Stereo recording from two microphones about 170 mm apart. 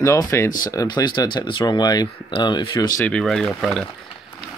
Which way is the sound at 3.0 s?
5° left (ahead or behind).